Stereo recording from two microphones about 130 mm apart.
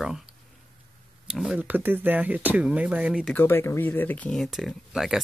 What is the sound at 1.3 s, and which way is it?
Speech, 5° right (ahead or behind).